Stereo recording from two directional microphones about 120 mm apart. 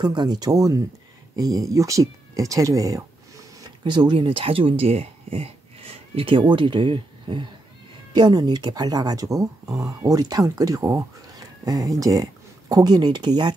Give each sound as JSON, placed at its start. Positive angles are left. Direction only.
{"t": 0.0, "sound": "speech", "side_deg": -35}
{"t": 3.8, "sound": "speech", "side_deg": -40}